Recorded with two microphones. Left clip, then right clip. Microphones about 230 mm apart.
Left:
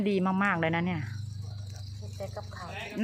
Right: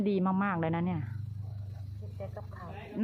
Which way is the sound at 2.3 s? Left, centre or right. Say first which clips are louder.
Left 5 dB; centre.